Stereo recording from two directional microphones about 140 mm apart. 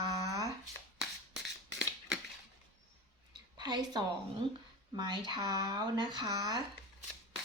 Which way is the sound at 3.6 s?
30° right (ahead or behind).